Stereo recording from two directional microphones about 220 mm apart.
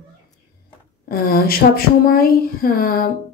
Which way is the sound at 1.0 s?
45° left (ahead or behind).